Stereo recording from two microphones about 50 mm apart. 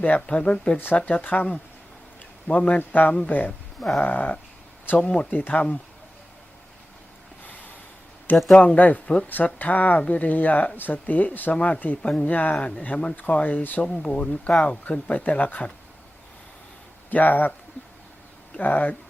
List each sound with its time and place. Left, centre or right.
0.3 s speech: left
2.5 s speech: left
2.7 s speech: left
3.8 s a sound: centre
4.0 s speech: left
4.9 s speech: centre
5.3 s speech: left
8.5 s speech: left
13.8 s speech: centre
17.1 s speech: left
18.6 s speech: left